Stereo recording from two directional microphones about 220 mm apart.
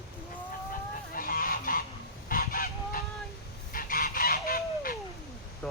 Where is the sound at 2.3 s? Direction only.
40° left (ahead or behind).